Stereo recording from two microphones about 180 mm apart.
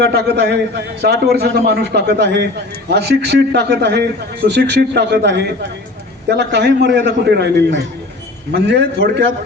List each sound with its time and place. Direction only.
0.0 s a man's voice: 65° right (ahead or behind)